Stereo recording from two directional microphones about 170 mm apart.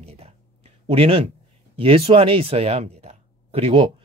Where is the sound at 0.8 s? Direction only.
35° right (ahead or behind).